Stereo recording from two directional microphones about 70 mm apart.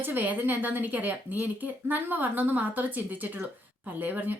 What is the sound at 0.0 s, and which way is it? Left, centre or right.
A woman's voice, right.